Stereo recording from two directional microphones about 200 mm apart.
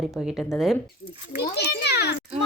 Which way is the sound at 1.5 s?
55° left (ahead or behind).